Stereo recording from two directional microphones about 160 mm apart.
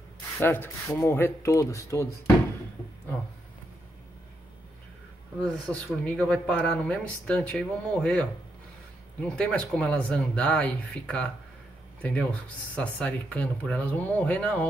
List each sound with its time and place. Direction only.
0.4 s speech: 15° left (ahead or behind)
5.4 s speech: 5° left (ahead or behind)